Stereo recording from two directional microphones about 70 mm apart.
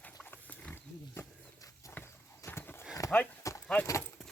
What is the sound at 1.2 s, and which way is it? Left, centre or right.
Wild animals, left.